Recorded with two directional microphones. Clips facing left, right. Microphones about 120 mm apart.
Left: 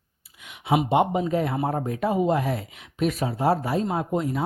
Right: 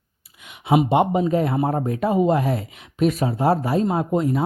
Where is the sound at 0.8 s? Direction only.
45° right (ahead or behind).